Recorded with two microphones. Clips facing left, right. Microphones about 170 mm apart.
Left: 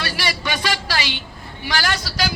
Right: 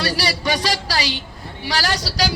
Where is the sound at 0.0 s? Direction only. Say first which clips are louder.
Right 4 dB; 35° right (ahead or behind).